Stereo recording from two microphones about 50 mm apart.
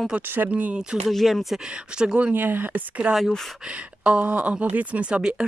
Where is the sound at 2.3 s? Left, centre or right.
Right.